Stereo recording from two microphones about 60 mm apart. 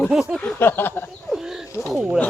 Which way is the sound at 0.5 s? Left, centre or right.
Left.